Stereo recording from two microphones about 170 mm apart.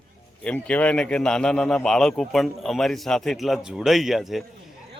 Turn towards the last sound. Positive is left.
turn(degrees=0)  # may be behind; listen again after turning